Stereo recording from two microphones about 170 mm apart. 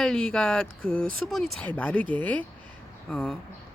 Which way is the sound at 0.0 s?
5° left (ahead or behind).